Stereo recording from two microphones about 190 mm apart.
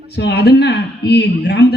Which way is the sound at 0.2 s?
60° left (ahead or behind).